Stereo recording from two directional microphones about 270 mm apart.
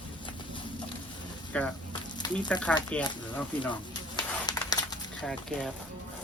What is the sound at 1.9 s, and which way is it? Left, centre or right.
Sizzle, centre.